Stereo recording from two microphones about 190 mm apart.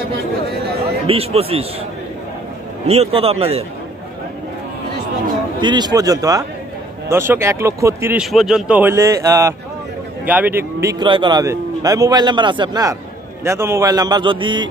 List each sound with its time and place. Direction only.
1.0 s a man's voice: 30° right (ahead or behind)
2.9 s a man's voice: 30° right (ahead or behind)
5.6 s a man's voice: 20° right (ahead or behind)
8.2 s a man's voice: centre (ahead or behind); by 14.7 s 25° right (ahead or behind)